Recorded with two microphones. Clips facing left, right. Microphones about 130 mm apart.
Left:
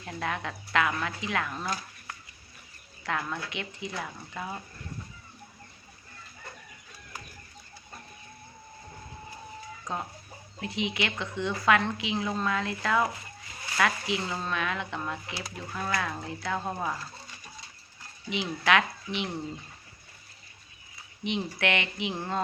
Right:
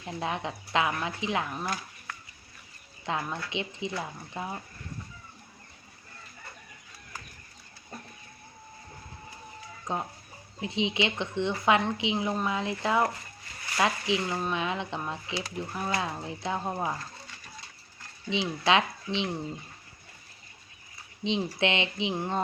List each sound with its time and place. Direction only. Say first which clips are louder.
0.0 s a woman's voice: right 1 dB; 20° right (ahead or behind)
3.0 s a woman's voice: even; 20° right (ahead or behind)
9.8 s a woman's voice: right 3 dB; 20° right (ahead or behind)
18.3 s a woman's voice: right 1 dB; 25° right (ahead or behind)
21.2 s a woman's voice: right 2 dB; 25° right (ahead or behind)